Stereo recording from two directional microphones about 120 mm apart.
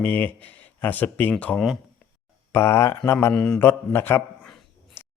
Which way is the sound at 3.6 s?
20° left (ahead or behind).